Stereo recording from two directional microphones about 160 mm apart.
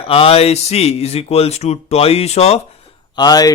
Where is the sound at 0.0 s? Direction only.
35° left (ahead or behind).